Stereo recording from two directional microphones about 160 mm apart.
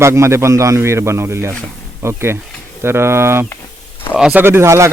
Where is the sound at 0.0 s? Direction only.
15° right (ahead or behind).